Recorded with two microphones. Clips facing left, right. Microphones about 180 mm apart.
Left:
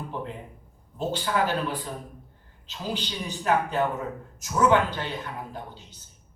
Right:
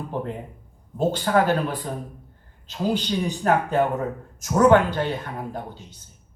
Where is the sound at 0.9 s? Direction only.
50° right (ahead or behind).